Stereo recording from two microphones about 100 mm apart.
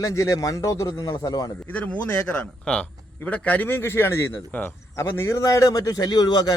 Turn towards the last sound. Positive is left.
turn(degrees=45)  # may be behind; listen again after turning